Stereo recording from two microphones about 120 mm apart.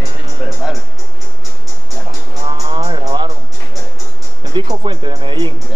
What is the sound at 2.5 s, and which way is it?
Music, 45° right (ahead or behind).